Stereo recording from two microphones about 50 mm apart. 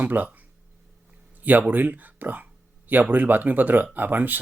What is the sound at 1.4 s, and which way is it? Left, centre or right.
Speech, right.